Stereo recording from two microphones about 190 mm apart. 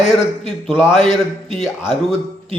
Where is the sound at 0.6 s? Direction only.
5° right (ahead or behind).